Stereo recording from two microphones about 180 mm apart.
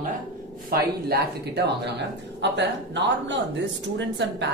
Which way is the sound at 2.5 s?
80° right.